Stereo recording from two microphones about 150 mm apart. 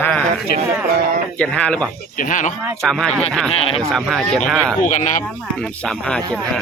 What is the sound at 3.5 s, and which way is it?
Speech, 40° left (ahead or behind).